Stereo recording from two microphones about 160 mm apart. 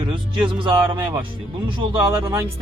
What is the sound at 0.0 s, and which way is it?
Speech, 30° right (ahead or behind).